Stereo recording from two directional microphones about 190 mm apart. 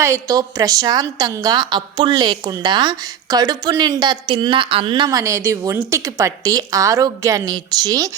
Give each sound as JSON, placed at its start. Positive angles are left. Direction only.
{"t": 0.0, "sound": "a woman's voice", "side_deg": -15}